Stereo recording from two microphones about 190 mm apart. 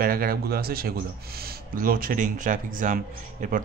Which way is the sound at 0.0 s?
50° right (ahead or behind).